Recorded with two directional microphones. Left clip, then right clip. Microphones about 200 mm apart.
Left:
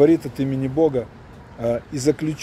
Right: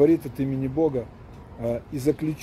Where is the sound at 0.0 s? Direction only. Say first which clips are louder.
Left 4 dB; 10° left (ahead or behind).